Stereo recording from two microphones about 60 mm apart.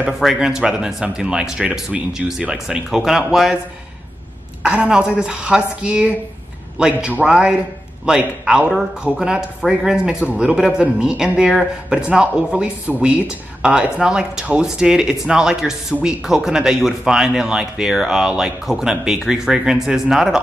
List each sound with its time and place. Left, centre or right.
0.0 s speech: centre
4.6 s a man's voice: centre